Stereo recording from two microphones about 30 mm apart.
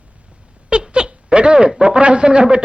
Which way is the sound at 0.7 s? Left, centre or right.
Right.